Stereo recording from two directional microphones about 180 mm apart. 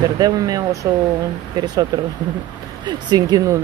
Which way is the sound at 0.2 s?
20° right (ahead or behind).